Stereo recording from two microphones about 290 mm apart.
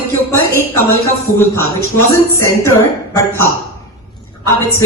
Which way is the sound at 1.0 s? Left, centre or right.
Centre.